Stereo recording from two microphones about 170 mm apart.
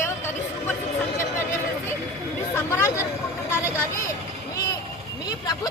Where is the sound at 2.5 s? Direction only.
15° left (ahead or behind).